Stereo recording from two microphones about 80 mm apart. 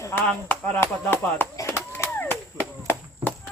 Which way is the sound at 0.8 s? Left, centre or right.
Left.